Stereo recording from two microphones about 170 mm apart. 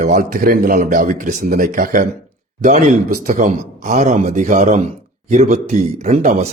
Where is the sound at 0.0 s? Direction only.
50° right (ahead or behind).